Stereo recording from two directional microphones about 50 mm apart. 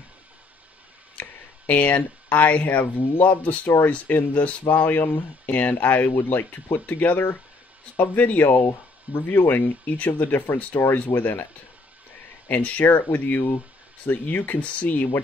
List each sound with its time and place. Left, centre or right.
1.2 s a sound: left
1.7 s speech: left
9.1 s speech: left
10.7 s speech: left
12.4 s speech: left